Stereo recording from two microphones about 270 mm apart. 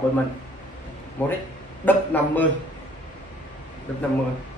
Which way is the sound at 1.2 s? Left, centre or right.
Centre.